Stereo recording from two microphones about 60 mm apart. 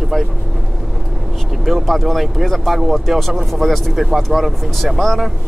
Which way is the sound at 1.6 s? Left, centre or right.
Centre.